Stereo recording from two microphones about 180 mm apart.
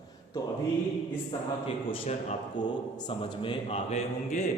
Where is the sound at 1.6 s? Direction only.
30° left (ahead or behind).